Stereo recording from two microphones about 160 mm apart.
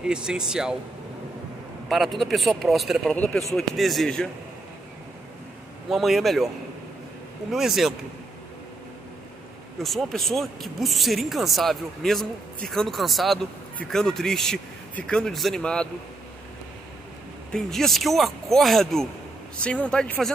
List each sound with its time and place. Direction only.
0.0 s speech: 5° right (ahead or behind)
1.9 s speech: centre (ahead or behind)
5.9 s speech: centre (ahead or behind)
7.5 s speech: centre (ahead or behind)
9.8 s speech: centre (ahead or behind)
17.5 s speech: centre (ahead or behind)